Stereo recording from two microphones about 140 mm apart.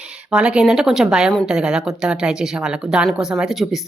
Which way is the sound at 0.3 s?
5° right (ahead or behind).